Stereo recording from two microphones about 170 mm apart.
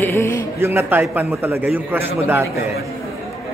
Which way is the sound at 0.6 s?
15° right (ahead or behind).